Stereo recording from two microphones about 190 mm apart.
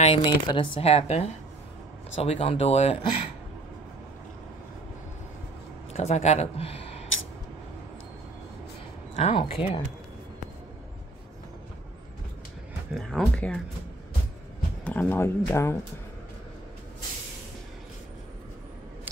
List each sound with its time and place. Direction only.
0.0 s speech: 30° left (ahead or behind)
5.9 s speech: 35° left (ahead or behind)
9.1 s speech: 35° left (ahead or behind)
12.9 s speech: centre (ahead or behind)
14.9 s speech: 10° left (ahead or behind)